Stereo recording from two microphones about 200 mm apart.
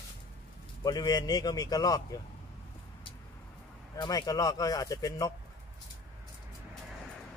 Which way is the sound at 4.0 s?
20° left (ahead or behind).